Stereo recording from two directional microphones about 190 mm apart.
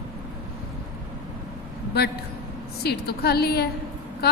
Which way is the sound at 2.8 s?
55° left (ahead or behind).